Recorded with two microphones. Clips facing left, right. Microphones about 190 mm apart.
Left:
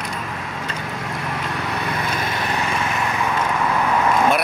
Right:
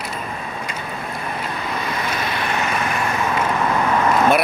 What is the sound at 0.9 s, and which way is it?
Vehicle, 85° left.